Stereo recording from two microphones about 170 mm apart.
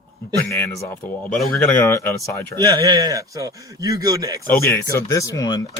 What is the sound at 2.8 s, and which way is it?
Speech, 20° right (ahead or behind).